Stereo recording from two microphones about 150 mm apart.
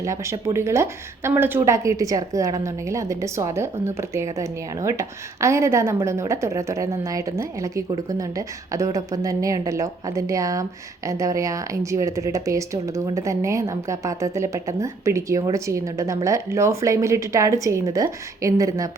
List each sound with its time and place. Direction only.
0.0 s speech: 20° right (ahead or behind)